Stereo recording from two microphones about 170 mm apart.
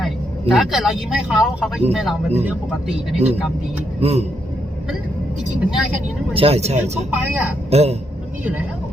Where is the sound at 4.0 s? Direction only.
35° right (ahead or behind).